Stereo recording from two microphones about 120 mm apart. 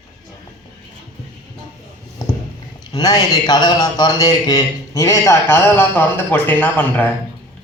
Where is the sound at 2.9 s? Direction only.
35° left (ahead or behind).